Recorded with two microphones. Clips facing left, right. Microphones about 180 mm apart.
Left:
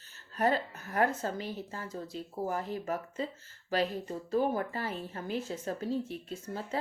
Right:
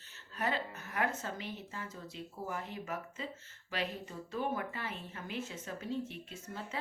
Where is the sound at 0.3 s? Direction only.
40° left (ahead or behind).